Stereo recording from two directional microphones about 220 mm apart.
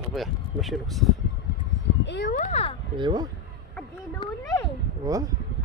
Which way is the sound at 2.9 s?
20° right (ahead or behind).